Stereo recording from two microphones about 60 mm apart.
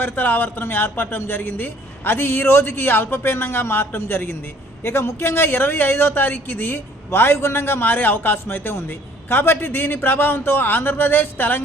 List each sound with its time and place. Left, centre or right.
0.0 s speech: left